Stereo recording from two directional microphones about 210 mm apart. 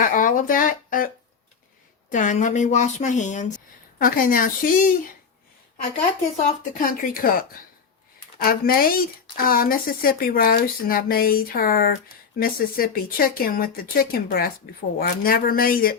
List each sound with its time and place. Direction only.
0.0 s a woman's voice: 40° left (ahead or behind)
6.6 s speech: 40° left (ahead or behind)